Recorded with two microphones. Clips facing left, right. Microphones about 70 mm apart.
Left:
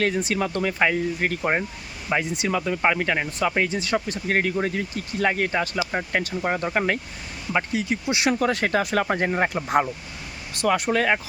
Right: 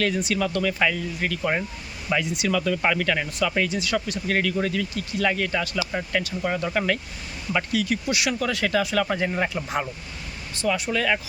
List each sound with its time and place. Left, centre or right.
0.0 s speech: left
8.3 s speech: left